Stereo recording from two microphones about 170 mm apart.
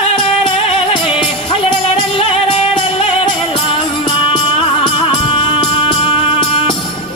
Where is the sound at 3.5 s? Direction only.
30° left (ahead or behind).